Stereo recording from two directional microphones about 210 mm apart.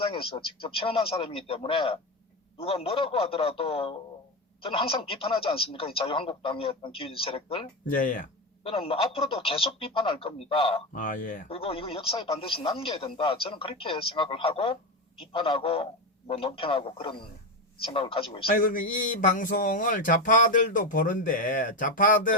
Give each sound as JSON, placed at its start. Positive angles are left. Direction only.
{"t": 0.0, "sound": "speech", "side_deg": 25}
{"t": 7.9, "sound": "speech", "side_deg": 40}
{"t": 8.6, "sound": "speech", "side_deg": 25}
{"t": 10.9, "sound": "speech", "side_deg": 40}
{"t": 11.4, "sound": "speech", "side_deg": 25}
{"t": 18.4, "sound": "speech", "side_deg": 40}